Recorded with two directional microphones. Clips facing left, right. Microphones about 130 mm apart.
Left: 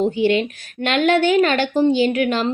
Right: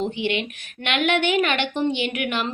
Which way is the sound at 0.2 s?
40° left (ahead or behind).